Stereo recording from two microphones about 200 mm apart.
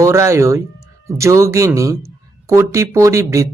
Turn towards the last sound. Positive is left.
turn(degrees=-15)  # may be behind; listen again after turning